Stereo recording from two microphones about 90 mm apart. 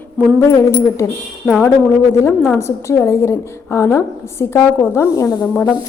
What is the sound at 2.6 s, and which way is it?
A woman's voice, 30° left (ahead or behind).